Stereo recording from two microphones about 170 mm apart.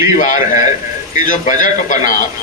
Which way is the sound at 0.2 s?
50° left (ahead or behind).